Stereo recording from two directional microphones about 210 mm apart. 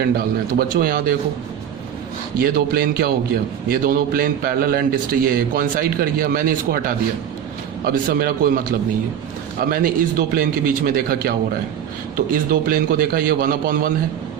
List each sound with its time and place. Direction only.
0.7 s a man's voice: 45° right (ahead or behind)
2.4 s a man's voice: 45° right (ahead or behind)